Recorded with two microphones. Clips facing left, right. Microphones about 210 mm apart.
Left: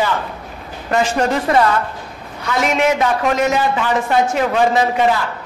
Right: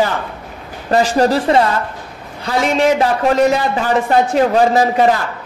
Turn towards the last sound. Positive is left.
turn(degrees=-40)  # may be behind; listen again after turning